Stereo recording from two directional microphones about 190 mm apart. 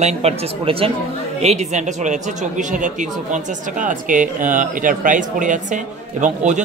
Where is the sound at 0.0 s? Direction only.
35° right (ahead or behind).